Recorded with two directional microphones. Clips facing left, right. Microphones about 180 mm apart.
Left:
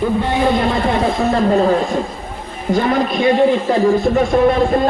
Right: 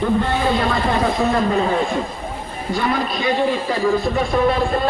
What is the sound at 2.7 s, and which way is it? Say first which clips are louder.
Speech: left 5 dB; 45° left (ahead or behind).